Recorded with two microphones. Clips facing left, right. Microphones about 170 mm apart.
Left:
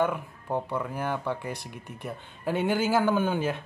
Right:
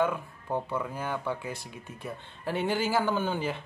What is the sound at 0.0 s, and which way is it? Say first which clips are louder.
Speech: left 1 dB; 10° left (ahead or behind).